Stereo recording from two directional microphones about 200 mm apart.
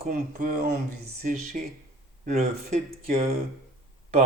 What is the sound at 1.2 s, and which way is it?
Speech, 40° right (ahead or behind).